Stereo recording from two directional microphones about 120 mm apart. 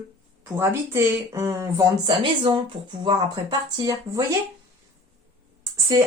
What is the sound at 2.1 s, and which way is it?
Speech, 40° right (ahead or behind).